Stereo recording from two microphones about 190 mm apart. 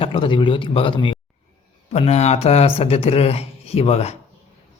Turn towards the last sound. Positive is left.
turn(degrees=35)  # may be behind; listen again after turning